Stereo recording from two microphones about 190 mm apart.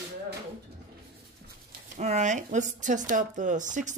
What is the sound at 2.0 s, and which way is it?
Speech, 40° right (ahead or behind).